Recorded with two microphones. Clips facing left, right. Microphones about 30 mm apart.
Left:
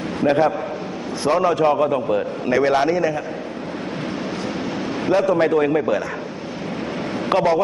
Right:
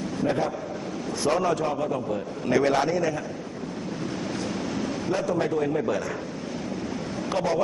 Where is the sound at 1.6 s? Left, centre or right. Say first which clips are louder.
Left 9 dB; left.